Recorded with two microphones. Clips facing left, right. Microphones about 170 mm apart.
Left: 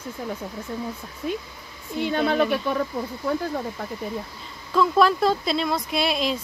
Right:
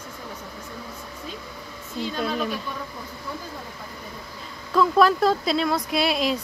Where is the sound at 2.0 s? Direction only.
60° left (ahead or behind).